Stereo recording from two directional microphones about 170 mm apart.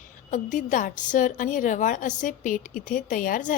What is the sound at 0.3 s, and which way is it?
A woman's voice, 50° left (ahead or behind).